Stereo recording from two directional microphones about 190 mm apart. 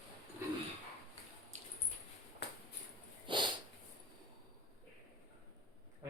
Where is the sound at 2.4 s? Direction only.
65° left (ahead or behind).